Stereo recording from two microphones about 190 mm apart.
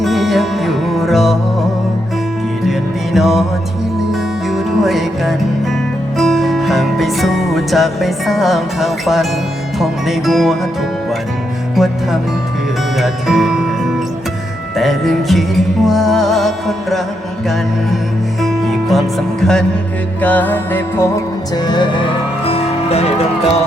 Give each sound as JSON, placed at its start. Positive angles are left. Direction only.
{"t": 0.0, "sound": "music", "side_deg": 0}
{"t": 2.6, "sound": "music", "side_deg": 0}
{"t": 11.8, "sound": "music", "side_deg": 0}
{"t": 13.0, "sound": "speech", "side_deg": 0}
{"t": 14.8, "sound": "music", "side_deg": 0}
{"t": 18.4, "sound": "music", "side_deg": 0}
{"t": 21.5, "sound": "music", "side_deg": 20}